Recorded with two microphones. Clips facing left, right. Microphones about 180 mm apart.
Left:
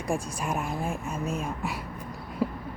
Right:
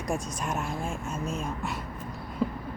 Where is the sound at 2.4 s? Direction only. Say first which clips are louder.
Even; 10° left (ahead or behind).